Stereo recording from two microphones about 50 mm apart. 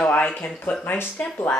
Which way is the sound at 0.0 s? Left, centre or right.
Left.